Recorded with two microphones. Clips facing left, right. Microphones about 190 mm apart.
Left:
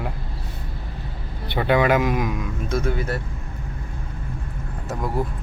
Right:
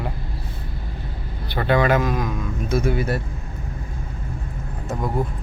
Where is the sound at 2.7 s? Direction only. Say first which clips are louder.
Right 3 dB; 10° right (ahead or behind).